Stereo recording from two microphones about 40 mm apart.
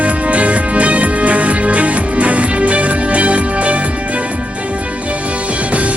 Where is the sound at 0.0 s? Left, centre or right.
Right.